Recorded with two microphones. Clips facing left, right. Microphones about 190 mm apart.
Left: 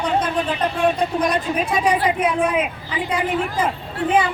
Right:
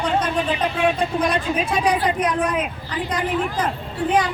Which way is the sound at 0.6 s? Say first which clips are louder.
Left 3 dB; 5° right (ahead or behind).